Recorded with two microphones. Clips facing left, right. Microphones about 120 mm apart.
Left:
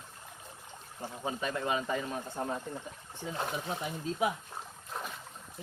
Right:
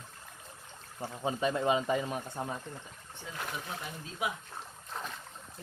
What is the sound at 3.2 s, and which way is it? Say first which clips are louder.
Speech: left 5 dB; 25° left (ahead or behind).